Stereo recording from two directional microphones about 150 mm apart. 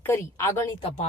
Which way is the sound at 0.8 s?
40° left (ahead or behind).